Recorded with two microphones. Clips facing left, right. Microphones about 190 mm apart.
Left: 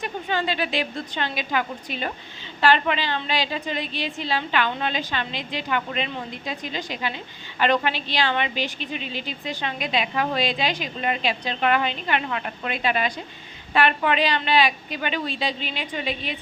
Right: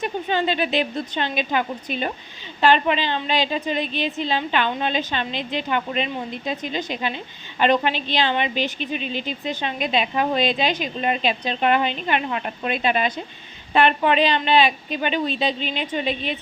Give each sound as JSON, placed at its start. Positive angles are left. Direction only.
{"t": 0.0, "sound": "a woman's voice", "side_deg": -20}